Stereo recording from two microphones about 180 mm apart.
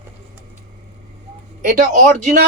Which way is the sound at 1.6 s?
45° right (ahead or behind).